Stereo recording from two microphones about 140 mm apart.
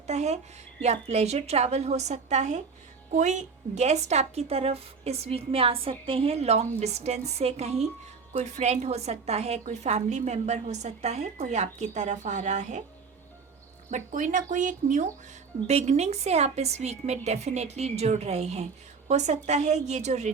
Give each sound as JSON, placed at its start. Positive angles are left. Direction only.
{"t": 0.1, "sound": "a sound", "side_deg": -55}
{"t": 0.8, "sound": "a woman's voice", "side_deg": -50}
{"t": 13.9, "sound": "a woman's voice", "side_deg": -65}
{"t": 15.6, "sound": "a woman's voice", "side_deg": -50}